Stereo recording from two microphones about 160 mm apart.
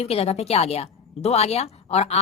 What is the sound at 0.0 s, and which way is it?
Speech, 40° left (ahead or behind).